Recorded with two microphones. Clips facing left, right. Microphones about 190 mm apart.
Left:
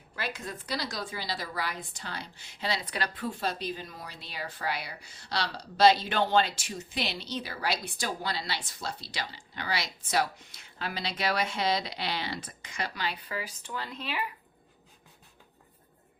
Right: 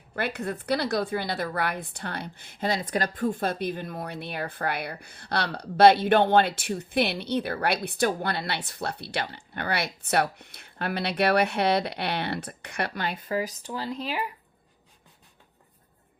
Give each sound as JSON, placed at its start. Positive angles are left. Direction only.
{"t": 0.2, "sound": "a woman's voice", "side_deg": -60}